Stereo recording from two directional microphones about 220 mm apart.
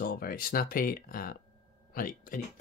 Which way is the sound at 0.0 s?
45° left (ahead or behind).